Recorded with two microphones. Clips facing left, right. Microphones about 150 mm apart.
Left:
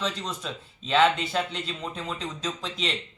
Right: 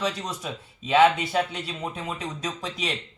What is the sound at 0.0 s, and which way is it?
A man's voice, 10° right (ahead or behind).